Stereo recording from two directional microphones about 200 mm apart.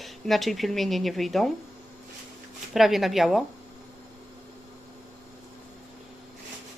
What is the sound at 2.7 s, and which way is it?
Speech, centre (ahead or behind).